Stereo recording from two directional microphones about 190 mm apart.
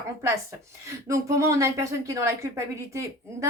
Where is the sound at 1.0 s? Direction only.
15° right (ahead or behind).